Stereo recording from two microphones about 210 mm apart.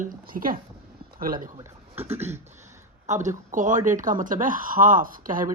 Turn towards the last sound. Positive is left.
turn(degrees=-40)  # may be behind; listen again after turning